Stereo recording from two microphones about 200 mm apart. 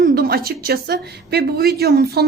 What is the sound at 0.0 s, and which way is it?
Speech, 50° right (ahead or behind).